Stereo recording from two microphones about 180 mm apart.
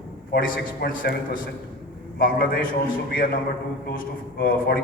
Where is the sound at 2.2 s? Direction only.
50° left (ahead or behind).